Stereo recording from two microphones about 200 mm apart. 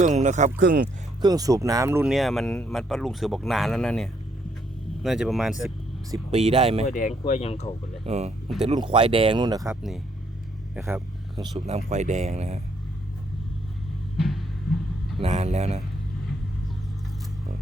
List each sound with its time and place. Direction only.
0.0 s speech: 35° right (ahead or behind)
1.2 s speech: 20° right (ahead or behind); by 5.7 s centre (ahead or behind)
6.3 s speech: 30° right (ahead or behind)
6.8 s speech: 40° left (ahead or behind)
8.0 s speech: 30° right (ahead or behind)
11.6 s speech: 35° right (ahead or behind)
14.2 s vehicle: centre (ahead or behind)
15.2 s speech: 35° right (ahead or behind)